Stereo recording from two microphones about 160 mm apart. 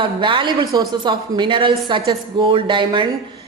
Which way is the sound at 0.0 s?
30° right (ahead or behind).